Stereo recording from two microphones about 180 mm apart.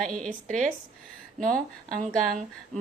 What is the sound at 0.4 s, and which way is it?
Speech, 45° right (ahead or behind).